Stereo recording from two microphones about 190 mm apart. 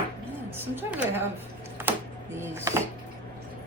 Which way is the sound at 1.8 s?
10° right (ahead or behind).